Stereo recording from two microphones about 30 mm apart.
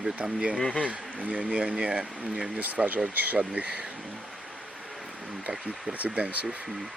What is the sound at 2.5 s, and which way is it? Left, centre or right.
Speech, right.